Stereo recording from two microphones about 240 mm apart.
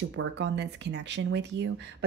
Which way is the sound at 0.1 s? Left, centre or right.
Right.